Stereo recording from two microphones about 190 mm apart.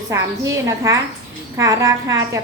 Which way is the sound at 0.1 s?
15° right (ahead or behind).